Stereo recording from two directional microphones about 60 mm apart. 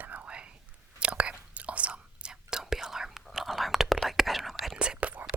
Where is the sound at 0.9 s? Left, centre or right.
Centre.